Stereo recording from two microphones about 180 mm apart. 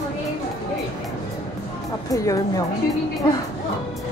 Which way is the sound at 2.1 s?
20° left (ahead or behind).